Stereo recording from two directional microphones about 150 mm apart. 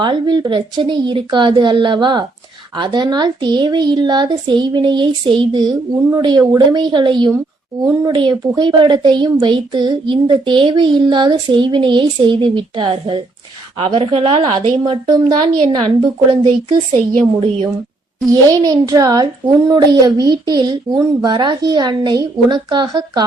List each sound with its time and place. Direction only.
0.0 s a woman's voice: 30° right (ahead or behind)
18.3 s speech: 25° right (ahead or behind)